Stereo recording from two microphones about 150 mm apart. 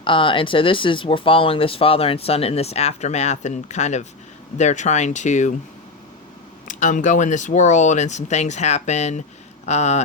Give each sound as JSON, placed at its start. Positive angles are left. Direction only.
{"t": 0.0, "sound": "speech", "side_deg": 35}
{"t": 6.7, "sound": "speech", "side_deg": 60}